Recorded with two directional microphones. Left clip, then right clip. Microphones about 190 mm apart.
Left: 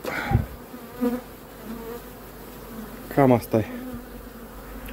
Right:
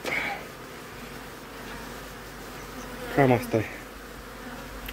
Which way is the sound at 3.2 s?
15° left (ahead or behind).